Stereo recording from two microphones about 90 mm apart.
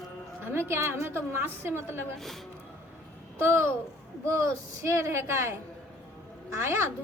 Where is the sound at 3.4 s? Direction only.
30° right (ahead or behind).